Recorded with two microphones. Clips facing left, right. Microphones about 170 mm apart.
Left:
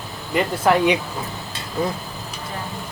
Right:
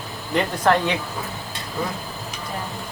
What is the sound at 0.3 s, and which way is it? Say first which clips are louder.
Speech: left 1 dB; 5° left (ahead or behind).